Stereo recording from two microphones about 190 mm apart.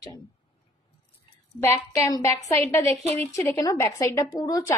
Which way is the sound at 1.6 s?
15° left (ahead or behind).